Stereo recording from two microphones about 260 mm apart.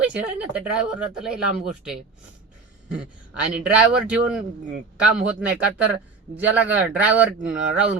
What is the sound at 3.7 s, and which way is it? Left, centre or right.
Speech, centre.